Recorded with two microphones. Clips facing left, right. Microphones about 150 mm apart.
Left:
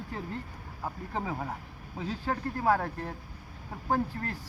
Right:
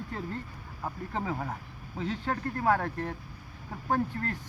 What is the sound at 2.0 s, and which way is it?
Speech, 10° left (ahead or behind).